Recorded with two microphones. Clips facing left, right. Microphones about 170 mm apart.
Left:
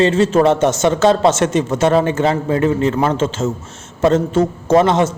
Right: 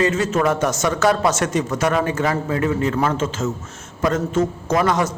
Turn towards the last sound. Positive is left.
turn(degrees=25)  # may be behind; listen again after turning